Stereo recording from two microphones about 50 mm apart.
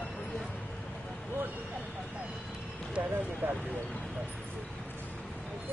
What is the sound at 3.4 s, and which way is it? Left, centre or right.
Speech, right.